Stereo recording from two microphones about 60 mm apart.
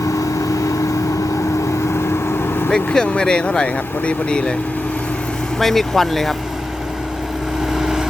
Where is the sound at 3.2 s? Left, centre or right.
Centre.